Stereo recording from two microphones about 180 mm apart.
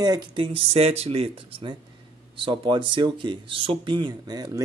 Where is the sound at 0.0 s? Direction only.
25° right (ahead or behind).